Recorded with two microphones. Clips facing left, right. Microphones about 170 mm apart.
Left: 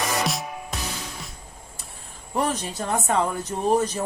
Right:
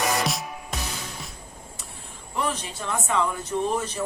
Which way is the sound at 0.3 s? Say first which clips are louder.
Left 1 dB; centre (ahead or behind).